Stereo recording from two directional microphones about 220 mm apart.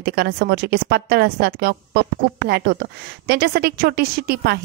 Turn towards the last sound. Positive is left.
turn(degrees=-45)  # may be behind; listen again after turning